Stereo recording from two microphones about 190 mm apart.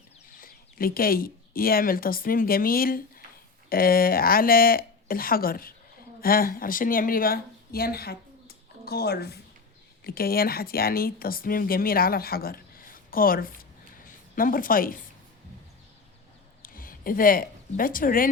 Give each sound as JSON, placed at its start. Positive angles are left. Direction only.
{"t": 0.3, "sound": "speech", "side_deg": 50}
{"t": 16.6, "sound": "speech", "side_deg": 50}